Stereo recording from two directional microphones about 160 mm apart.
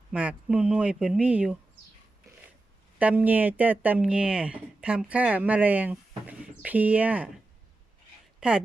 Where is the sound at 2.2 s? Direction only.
20° right (ahead or behind).